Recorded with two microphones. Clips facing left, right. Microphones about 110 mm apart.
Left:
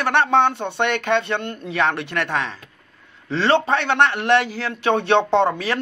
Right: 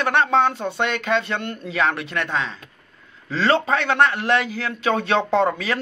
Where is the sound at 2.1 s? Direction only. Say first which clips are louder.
Left 1 dB; 70° left (ahead or behind).